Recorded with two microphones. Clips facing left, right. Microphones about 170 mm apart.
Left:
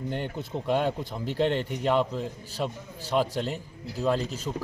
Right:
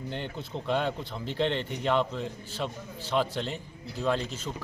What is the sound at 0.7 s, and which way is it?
A man's voice, 10° left (ahead or behind).